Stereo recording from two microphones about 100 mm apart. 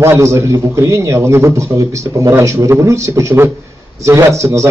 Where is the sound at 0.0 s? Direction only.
30° right (ahead or behind).